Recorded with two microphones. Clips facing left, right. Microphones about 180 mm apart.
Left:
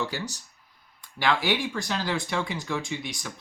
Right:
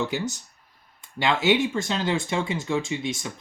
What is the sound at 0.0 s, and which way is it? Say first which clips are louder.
Speech: right 4 dB; 20° right (ahead or behind).